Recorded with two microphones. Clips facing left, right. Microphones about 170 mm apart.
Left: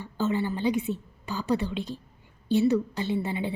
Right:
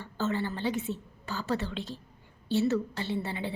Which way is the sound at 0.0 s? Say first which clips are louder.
Left 4 dB; 15° left (ahead or behind).